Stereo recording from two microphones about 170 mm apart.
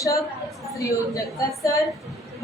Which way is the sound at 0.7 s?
20° left (ahead or behind).